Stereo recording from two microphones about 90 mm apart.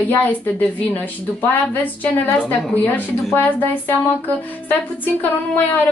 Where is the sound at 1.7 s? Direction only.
20° left (ahead or behind).